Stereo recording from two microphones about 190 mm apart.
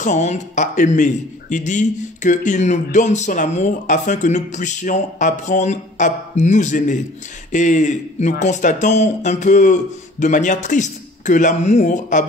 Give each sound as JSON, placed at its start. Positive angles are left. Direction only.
{"t": 0.0, "sound": "speech", "side_deg": 40}